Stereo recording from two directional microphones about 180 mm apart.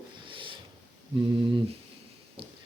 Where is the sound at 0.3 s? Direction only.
30° right (ahead or behind).